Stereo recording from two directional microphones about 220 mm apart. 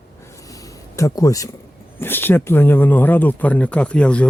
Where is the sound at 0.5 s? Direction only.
15° left (ahead or behind).